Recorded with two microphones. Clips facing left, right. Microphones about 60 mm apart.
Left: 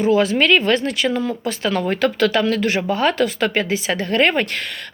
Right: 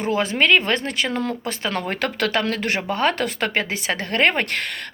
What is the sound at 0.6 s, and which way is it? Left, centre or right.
Speech, right.